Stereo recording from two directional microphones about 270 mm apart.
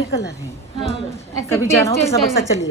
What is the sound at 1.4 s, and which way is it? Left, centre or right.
A woman's voice, centre.